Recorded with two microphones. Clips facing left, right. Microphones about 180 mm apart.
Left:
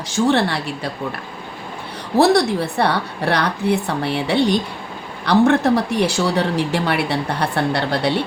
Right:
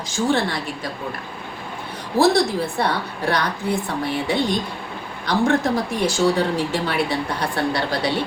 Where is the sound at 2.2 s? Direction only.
65° left (ahead or behind).